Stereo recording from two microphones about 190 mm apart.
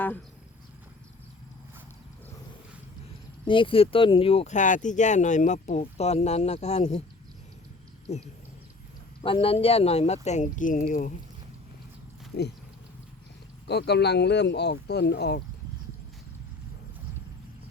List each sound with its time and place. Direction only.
3.4 s speech: 25° left (ahead or behind)
8.1 s speech: 35° left (ahead or behind)
13.7 s speech: 60° left (ahead or behind)